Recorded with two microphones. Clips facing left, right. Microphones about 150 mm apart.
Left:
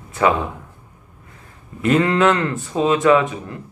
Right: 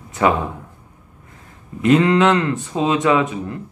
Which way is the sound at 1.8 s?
20° right (ahead or behind).